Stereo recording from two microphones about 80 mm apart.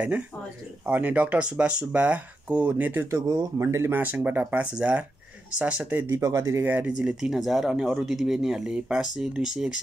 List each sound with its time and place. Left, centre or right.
0.8 s speech: centre
3.1 s speech: right
4.0 s speech: right
6.1 s speech: right
6.6 s speech: right
7.0 s speech: centre